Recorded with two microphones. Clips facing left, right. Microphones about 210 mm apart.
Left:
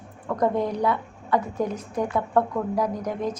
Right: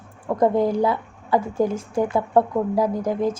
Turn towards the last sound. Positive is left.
turn(degrees=-30)  # may be behind; listen again after turning